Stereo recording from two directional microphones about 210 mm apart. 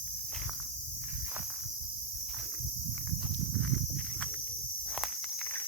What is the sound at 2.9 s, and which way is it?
Walk, centre (ahead or behind).